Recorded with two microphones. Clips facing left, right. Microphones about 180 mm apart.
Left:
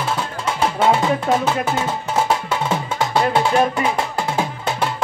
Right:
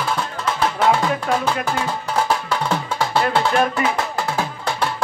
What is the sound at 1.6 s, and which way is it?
Music, 25° left (ahead or behind).